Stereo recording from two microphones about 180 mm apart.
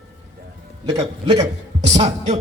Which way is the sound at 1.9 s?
35° right (ahead or behind).